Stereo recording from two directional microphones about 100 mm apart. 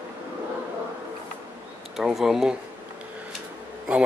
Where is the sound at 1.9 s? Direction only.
5° right (ahead or behind).